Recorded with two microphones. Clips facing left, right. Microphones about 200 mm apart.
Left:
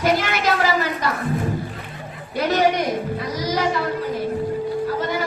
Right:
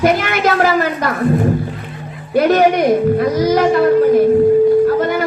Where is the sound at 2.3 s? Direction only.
55° right (ahead or behind).